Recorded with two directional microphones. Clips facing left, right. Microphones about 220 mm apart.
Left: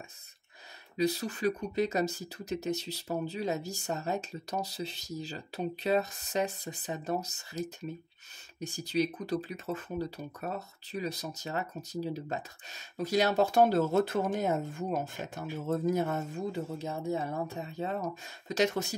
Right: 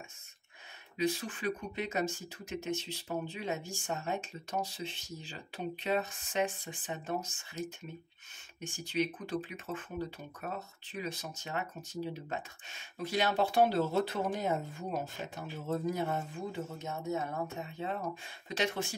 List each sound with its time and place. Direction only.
0.9 s speech: 40° left (ahead or behind)